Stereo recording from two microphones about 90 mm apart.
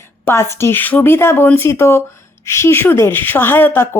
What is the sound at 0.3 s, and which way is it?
Speech, 30° left (ahead or behind).